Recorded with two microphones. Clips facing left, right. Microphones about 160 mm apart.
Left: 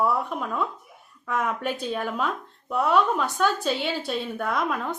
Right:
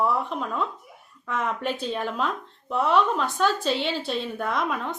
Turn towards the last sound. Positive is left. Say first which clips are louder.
# even
turn(degrees=0)  # may be behind; listen again after turning